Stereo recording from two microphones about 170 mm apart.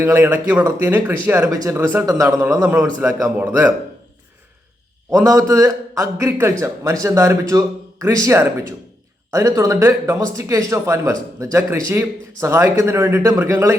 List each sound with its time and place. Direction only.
0.0 s speech: 10° right (ahead or behind)
5.1 s a man's voice: 20° right (ahead or behind)